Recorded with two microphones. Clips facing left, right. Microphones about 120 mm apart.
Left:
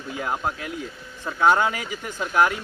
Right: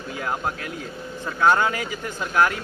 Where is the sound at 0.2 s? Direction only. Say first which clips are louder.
Even; 15° left (ahead or behind).